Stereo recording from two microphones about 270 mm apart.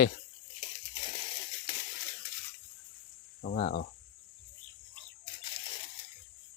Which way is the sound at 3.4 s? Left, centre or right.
Left.